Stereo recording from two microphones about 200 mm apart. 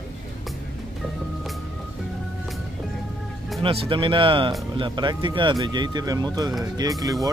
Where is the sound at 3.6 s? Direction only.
25° right (ahead or behind).